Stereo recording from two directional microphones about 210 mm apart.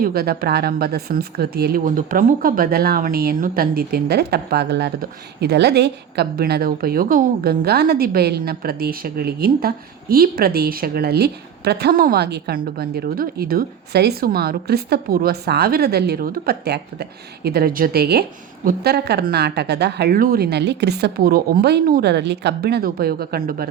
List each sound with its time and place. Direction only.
0.0 s a woman's voice: 45° right (ahead or behind)